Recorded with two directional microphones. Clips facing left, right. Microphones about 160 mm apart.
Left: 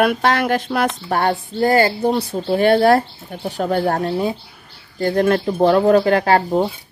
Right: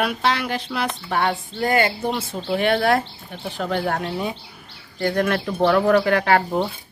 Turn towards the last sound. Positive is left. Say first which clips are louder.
# left 3 dB
turn(degrees=30)  # may be behind; listen again after turning